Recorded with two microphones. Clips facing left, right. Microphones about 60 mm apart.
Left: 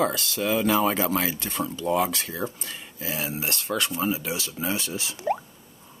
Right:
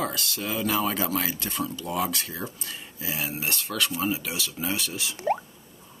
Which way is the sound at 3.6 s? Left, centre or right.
Left.